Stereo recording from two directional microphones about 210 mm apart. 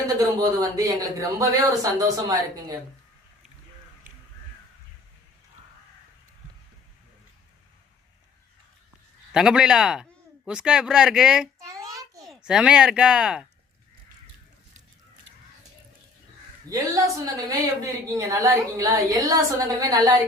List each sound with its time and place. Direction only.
0.0 s a woman's voice: 15° right (ahead or behind)
9.3 s a man's voice: 5° right (ahead or behind)
11.6 s a sound: 15° right (ahead or behind)
12.3 s speech: 5° right (ahead or behind)
16.6 s a woman's voice: 15° right (ahead or behind)